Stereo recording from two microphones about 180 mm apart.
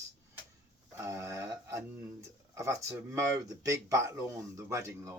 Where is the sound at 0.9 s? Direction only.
15° right (ahead or behind).